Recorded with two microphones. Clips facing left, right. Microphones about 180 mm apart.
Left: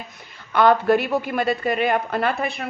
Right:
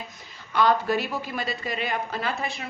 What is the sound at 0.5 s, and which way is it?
A woman's voice, 60° left (ahead or behind).